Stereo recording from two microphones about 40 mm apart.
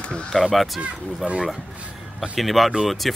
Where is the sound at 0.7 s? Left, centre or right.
Right.